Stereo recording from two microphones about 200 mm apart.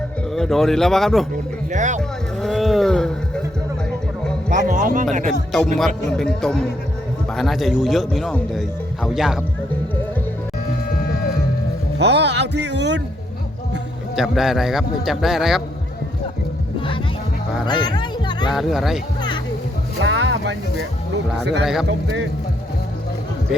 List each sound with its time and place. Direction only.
0.3 s a man's voice: centre (ahead or behind)
1.7 s speech: 40° right (ahead or behind)
2.0 s speech: centre (ahead or behind)
4.4 s speech: 40° right (ahead or behind)
5.8 s a man's voice: 5° left (ahead or behind)
11.9 s a man's voice: 60° right (ahead or behind)
14.2 s a man's voice: centre (ahead or behind)
17.7 s music: 20° left (ahead or behind)
18.5 s a man's voice: centre (ahead or behind)
20.0 s music: 70° right (ahead or behind)
21.4 s a man's voice: 60° right (ahead or behind)